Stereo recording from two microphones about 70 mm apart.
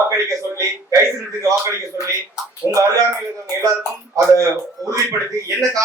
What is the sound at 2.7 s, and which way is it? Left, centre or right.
Speech, right.